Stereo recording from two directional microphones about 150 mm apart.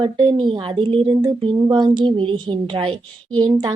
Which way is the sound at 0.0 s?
30° right (ahead or behind).